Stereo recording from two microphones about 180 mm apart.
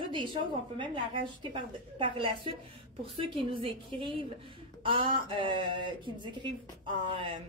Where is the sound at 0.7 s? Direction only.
25° right (ahead or behind).